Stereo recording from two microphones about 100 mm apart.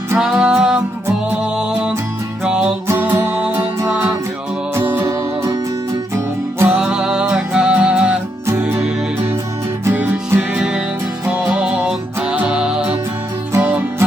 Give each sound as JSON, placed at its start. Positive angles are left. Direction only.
{"t": 0.2, "sound": "music", "side_deg": -10}
{"t": 2.8, "sound": "music", "side_deg": -20}
{"t": 6.1, "sound": "music", "side_deg": -25}
{"t": 6.8, "sound": "music", "side_deg": -5}
{"t": 9.8, "sound": "music", "side_deg": -20}
{"t": 13.6, "sound": "music", "side_deg": -20}